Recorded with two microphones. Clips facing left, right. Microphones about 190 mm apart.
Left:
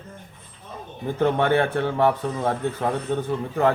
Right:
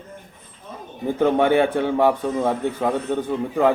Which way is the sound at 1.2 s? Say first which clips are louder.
Right 3 dB; 15° right (ahead or behind).